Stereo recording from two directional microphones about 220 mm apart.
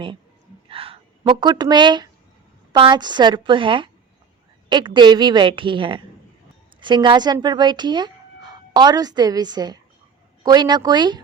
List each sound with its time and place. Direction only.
0.7 s a woman's voice: 25° right (ahead or behind)
4.9 s a woman's voice: 20° right (ahead or behind)